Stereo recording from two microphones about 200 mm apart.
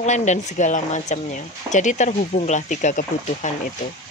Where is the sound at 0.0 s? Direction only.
35° left (ahead or behind).